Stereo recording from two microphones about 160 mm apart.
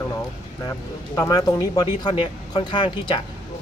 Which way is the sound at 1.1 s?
20° left (ahead or behind).